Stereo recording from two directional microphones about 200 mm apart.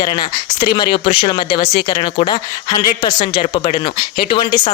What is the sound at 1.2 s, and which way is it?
Speech, 20° left (ahead or behind).